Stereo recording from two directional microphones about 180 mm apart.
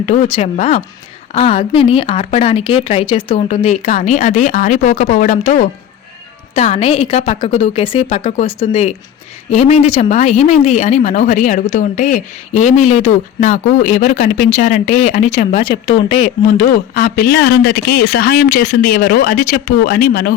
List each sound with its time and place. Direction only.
0.0 s speech: 40° left (ahead or behind)
16.5 s speech: 55° left (ahead or behind)